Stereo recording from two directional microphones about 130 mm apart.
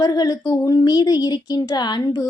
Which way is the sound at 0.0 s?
30° left (ahead or behind).